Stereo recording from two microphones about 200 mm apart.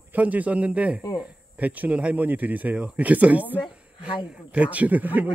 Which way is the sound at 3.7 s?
5° right (ahead or behind).